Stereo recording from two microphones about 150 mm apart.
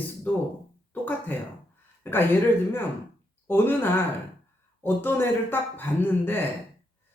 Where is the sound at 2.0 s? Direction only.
15° left (ahead or behind).